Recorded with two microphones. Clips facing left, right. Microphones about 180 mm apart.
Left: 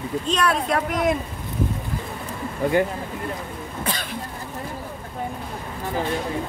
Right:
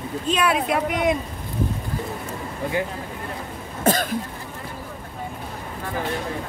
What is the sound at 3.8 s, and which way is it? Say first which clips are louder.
Speech: right 9 dB; 45° right (ahead or behind).